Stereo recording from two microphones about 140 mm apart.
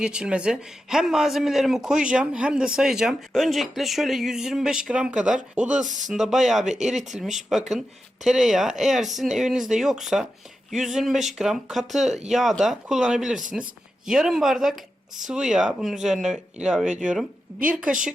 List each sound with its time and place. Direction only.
0.0 s speech: 5° right (ahead or behind)
5.8 s speech: 65° right (ahead or behind)
6.1 s speech: centre (ahead or behind)